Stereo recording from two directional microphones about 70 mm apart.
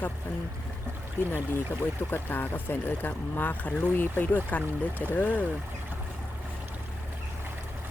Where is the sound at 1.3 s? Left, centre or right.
Left.